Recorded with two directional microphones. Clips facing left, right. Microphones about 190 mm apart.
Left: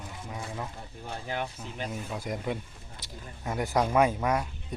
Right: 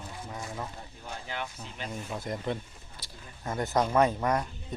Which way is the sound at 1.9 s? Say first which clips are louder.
Right 2 dB; 5° left (ahead or behind).